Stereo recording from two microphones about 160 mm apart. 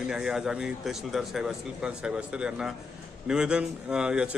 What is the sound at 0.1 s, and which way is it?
Speech, 5° right (ahead or behind).